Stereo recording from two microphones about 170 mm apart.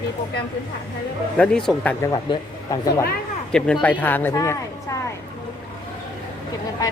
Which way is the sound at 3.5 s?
5° left (ahead or behind).